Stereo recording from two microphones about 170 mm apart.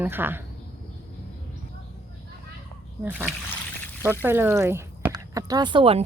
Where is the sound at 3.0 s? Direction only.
10° right (ahead or behind).